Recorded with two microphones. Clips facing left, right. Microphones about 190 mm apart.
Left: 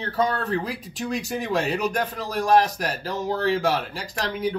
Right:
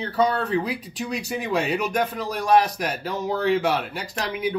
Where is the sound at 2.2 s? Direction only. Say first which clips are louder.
Left 1 dB; 40° left (ahead or behind).